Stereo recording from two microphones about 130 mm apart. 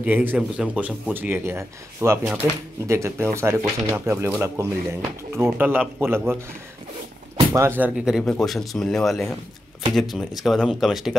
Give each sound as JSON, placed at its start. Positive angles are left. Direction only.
{"t": 0.0, "sound": "speech", "side_deg": -15}
{"t": 7.3, "sound": "speech", "side_deg": -20}
{"t": 7.9, "sound": "speech", "side_deg": -5}
{"t": 8.2, "sound": "speech", "side_deg": 5}